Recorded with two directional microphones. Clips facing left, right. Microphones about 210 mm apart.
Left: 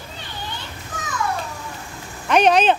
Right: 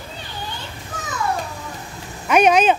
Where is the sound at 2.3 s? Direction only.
10° right (ahead or behind).